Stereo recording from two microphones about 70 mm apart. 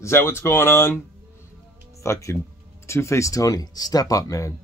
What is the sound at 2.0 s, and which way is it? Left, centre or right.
Speech, left.